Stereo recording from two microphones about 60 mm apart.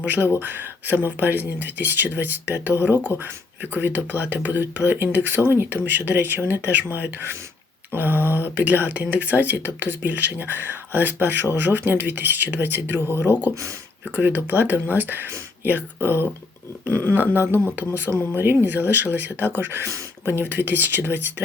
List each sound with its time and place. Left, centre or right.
0.0 s speech: right